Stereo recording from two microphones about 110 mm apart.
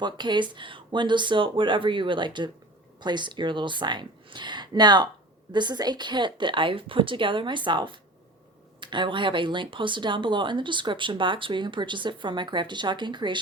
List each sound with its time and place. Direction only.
0.0 s speech: 45° right (ahead or behind)